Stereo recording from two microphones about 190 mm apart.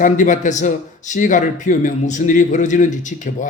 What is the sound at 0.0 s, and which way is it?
A man's voice, 40° left (ahead or behind).